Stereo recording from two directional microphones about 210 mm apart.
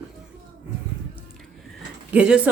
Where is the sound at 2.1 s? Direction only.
5° right (ahead or behind).